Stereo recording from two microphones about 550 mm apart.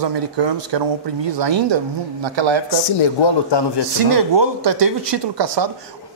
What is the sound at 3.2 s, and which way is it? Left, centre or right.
Speech, left.